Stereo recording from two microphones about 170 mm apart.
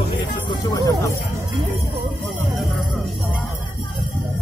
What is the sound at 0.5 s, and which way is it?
Music, 20° left (ahead or behind).